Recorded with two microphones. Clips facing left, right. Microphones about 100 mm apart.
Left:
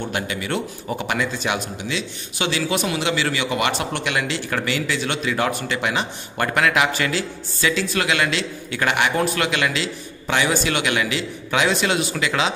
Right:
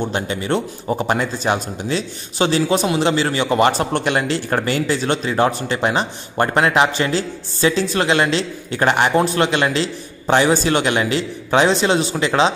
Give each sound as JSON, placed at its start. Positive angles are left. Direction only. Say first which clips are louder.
{"t": 0.0, "sound": "a man's voice", "louder": "right 4 dB", "side_deg": -30}